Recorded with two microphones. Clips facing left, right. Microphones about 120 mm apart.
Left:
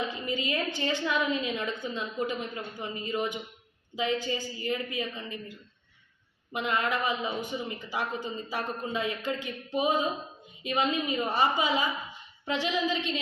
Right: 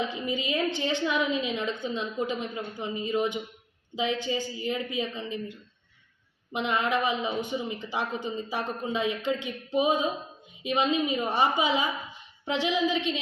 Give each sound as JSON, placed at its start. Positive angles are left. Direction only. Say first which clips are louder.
{"t": 0.0, "sound": "a woman's voice", "louder": "right 2 dB", "side_deg": -15}
{"t": 6.5, "sound": "a man's voice", "louder": "right 2 dB", "side_deg": -20}